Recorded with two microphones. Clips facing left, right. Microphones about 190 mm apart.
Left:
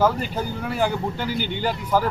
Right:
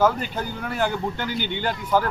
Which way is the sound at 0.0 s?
5° left (ahead or behind).